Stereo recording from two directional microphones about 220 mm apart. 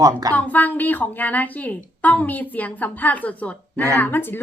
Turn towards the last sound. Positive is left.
turn(degrees=10)  # may be behind; listen again after turning